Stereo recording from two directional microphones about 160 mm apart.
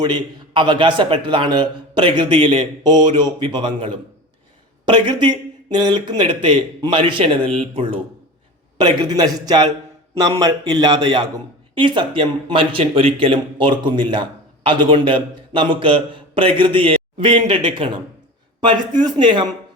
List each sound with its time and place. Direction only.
0.0 s a man's voice: 30° right (ahead or behind)
8.8 s a man's voice: 25° right (ahead or behind)